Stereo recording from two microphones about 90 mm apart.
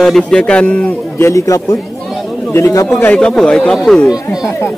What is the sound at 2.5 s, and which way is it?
Speech, 35° left (ahead or behind).